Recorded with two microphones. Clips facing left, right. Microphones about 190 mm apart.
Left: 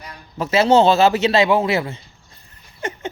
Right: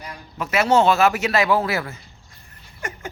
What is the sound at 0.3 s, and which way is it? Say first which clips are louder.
Speech: left 4 dB; 30° left (ahead or behind).